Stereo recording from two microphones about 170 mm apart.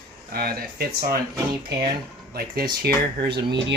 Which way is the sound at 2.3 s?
65° right (ahead or behind).